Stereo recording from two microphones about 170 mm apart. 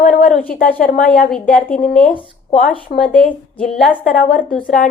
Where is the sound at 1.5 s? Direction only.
55° left (ahead or behind).